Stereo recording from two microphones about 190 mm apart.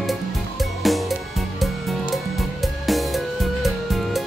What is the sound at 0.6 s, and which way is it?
Music, centre (ahead or behind).